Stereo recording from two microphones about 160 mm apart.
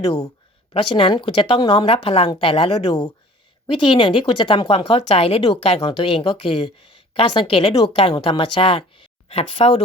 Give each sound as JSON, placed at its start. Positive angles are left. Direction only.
{"t": 0.7, "sound": "speech", "side_deg": 35}